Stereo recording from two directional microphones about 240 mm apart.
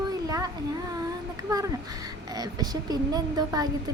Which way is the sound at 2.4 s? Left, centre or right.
Centre.